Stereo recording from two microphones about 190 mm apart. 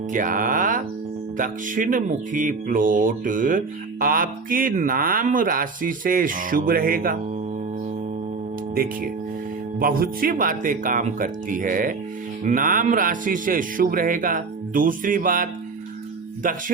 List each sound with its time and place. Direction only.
0.1 s speech: 45° right (ahead or behind)
9.8 s speech: 50° right (ahead or behind)